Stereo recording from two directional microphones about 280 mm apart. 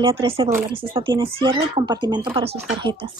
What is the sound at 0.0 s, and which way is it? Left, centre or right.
A woman's voice, centre.